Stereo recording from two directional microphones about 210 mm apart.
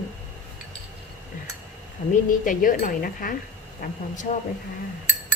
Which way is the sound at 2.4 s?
40° left (ahead or behind).